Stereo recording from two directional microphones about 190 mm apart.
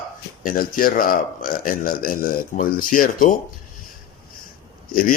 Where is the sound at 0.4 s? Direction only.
45° left (ahead or behind).